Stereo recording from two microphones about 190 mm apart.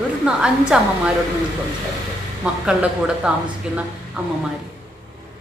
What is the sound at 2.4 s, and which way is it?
Speech, 5° right (ahead or behind).